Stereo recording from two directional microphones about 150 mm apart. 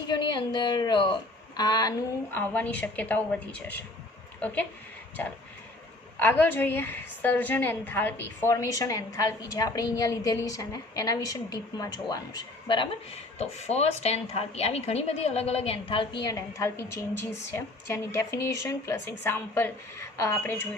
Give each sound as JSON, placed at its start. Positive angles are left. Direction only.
{"t": 0.1, "sound": "a woman's voice", "side_deg": 30}
{"t": 2.3, "sound": "a woman's voice", "side_deg": 10}
{"t": 13.4, "sound": "a woman's voice", "side_deg": 45}